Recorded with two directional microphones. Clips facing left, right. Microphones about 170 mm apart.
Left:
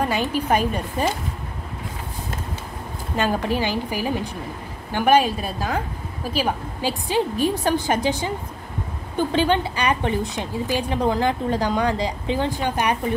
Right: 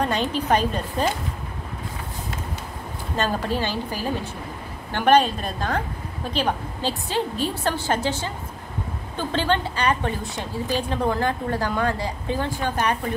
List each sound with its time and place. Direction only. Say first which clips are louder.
0.0 s a woman's voice: left 1 dB; 10° left (ahead or behind)
3.2 s a woman's voice: left 2 dB; 15° left (ahead or behind)